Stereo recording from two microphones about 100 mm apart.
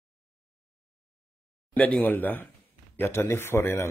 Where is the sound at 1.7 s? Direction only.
15° left (ahead or behind).